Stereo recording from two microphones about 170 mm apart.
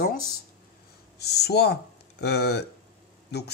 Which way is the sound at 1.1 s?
75° left (ahead or behind).